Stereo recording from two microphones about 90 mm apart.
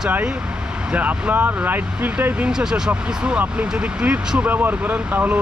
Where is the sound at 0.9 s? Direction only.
20° right (ahead or behind).